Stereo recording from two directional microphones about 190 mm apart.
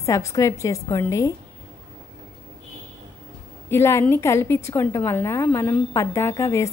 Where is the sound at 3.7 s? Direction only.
15° left (ahead or behind).